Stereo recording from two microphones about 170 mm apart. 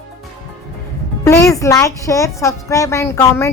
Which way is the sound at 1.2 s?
20° left (ahead or behind).